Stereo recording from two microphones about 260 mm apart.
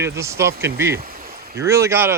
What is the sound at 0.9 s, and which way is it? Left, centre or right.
Speech, right.